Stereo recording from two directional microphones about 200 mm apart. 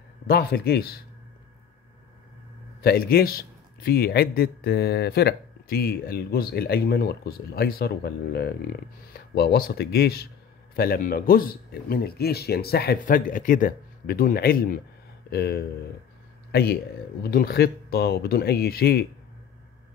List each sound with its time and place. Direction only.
0.3 s a man's voice: 50° left (ahead or behind)
2.8 s a man's voice: 50° left (ahead or behind)
17.2 s a man's voice: 50° left (ahead or behind)